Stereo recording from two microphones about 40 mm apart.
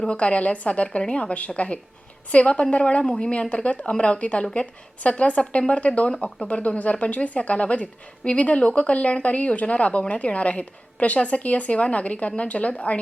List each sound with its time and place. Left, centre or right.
0.1 s speech: left